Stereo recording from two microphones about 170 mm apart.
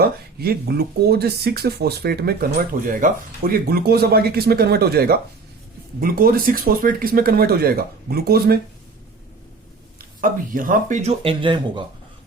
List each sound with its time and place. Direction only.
0.0 s speech: 65° right (ahead or behind)
10.0 s speech: 55° right (ahead or behind); by 11.9 s 30° right (ahead or behind)